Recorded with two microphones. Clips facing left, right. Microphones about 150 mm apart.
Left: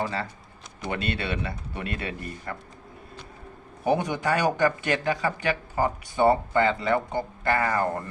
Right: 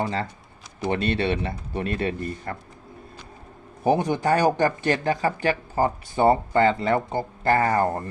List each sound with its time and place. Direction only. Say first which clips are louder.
0.9 s speech: right 5 dB; 40° right (ahead or behind)
3.8 s speech: right 4 dB; 40° right (ahead or behind)